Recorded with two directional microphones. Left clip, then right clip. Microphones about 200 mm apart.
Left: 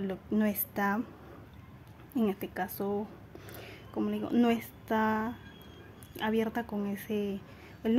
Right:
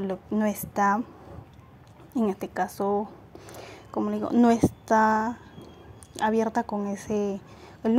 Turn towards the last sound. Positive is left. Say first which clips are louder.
# right 5 dB
turn(degrees=-15)  # may be behind; listen again after turning